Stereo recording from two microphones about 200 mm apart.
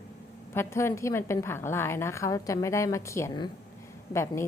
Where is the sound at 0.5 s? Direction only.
15° left (ahead or behind).